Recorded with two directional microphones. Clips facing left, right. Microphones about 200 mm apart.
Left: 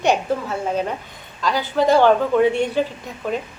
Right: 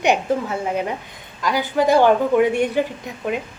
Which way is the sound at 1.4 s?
15° right (ahead or behind).